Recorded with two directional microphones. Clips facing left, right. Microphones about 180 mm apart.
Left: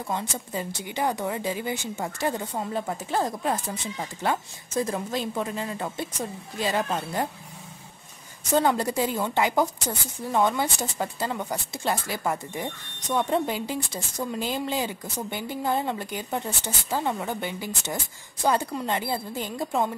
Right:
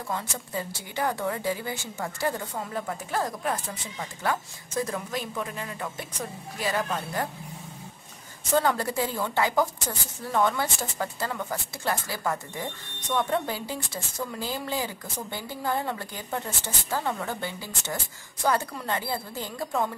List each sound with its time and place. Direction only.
0.1 s speech: 20° left (ahead or behind)
8.5 s speech: 20° left (ahead or behind)